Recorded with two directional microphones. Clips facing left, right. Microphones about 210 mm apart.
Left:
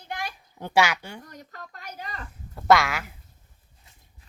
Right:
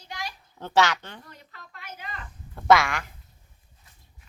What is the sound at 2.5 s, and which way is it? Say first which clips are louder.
Speech: even; centre (ahead or behind).